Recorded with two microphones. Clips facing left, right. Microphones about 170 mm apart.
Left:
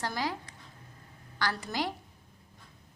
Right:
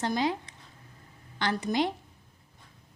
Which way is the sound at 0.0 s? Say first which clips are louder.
Right 5 dB; 20° right (ahead or behind).